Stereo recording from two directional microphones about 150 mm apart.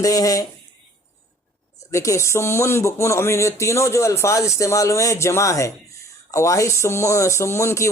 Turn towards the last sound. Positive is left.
turn(degrees=20)  # may be behind; listen again after turning